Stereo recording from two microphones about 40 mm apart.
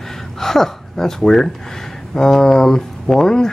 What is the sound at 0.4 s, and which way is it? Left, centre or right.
Speech, centre.